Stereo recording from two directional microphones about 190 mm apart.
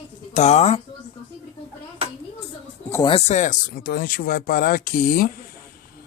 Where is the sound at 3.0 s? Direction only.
30° left (ahead or behind).